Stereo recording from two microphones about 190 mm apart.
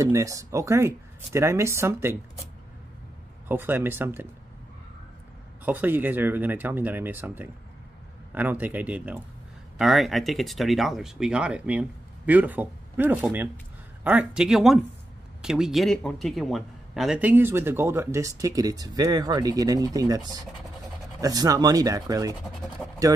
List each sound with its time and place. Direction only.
0.0 s a man's voice: 15° right (ahead or behind)
3.4 s a man's voice: 10° right (ahead or behind)
5.7 s a man's voice: 10° right (ahead or behind)